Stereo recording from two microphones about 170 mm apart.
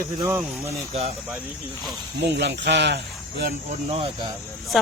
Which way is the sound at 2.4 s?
85° right.